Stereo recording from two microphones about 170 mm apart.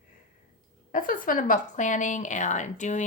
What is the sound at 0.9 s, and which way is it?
A woman's voice, 55° left (ahead or behind).